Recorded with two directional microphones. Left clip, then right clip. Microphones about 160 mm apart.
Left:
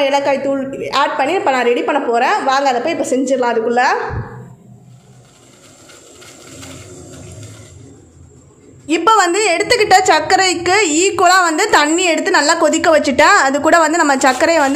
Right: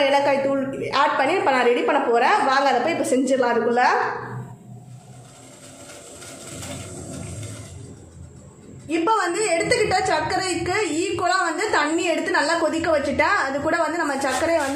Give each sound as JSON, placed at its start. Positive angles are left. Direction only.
{"t": 0.0, "sound": "a woman's voice", "side_deg": 30}
{"t": 8.8, "sound": "a woman's voice", "side_deg": 55}